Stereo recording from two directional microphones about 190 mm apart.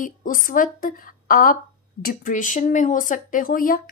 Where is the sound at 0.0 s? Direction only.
45° left (ahead or behind).